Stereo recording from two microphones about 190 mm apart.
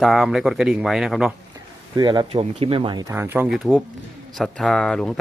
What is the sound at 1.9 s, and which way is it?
Speech, 20° right (ahead or behind).